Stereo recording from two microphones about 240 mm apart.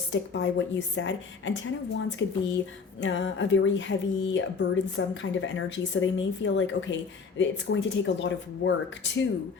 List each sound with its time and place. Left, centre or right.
0.1 s speech: left